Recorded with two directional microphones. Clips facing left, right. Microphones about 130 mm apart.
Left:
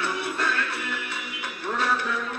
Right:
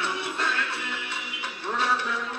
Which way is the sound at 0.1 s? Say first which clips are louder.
Left 2 dB; 20° right (ahead or behind).